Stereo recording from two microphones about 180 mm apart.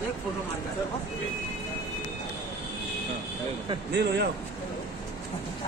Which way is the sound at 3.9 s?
70° right (ahead or behind).